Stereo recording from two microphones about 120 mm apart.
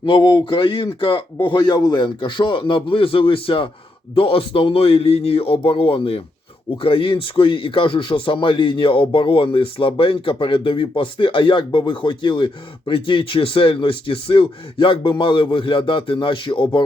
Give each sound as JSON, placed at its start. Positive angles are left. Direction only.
{"t": 0.0, "sound": "speech", "side_deg": 40}